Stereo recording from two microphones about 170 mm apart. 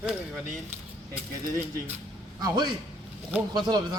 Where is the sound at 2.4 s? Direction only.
25° right (ahead or behind).